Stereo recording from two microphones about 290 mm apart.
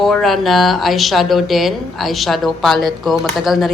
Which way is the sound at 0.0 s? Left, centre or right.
Centre.